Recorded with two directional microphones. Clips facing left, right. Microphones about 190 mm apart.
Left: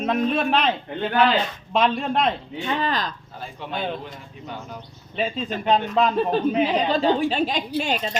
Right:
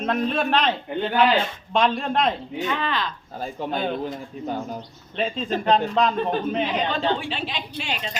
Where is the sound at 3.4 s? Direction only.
40° right (ahead or behind).